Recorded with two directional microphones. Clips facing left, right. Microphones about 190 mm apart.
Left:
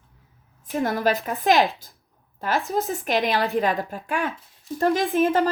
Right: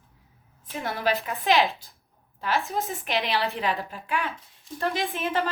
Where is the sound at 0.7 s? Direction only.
45° left (ahead or behind).